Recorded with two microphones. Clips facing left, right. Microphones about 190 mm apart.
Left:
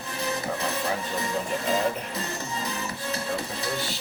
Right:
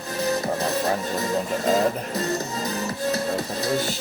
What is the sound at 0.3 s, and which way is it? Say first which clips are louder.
Music: right 5 dB; 40° right (ahead or behind).